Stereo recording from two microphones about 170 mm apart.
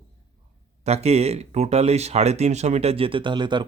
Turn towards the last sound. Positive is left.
turn(degrees=-25)  # may be behind; listen again after turning